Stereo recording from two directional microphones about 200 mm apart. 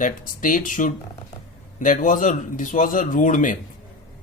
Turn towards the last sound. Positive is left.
turn(degrees=40)  # may be behind; listen again after turning